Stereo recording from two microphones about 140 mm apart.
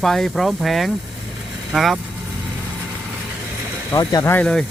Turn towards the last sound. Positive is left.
turn(degrees=15)  # may be behind; listen again after turning